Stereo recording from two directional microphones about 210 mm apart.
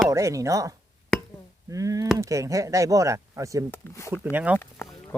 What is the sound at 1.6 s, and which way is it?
Speech, 15° right (ahead or behind).